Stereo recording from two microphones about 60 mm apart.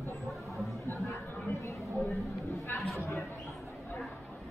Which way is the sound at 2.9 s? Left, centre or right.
Left.